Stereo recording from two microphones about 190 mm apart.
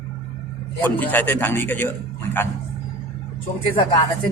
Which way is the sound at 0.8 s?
10° left (ahead or behind).